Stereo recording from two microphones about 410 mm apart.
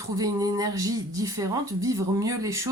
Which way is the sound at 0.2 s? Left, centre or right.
Centre.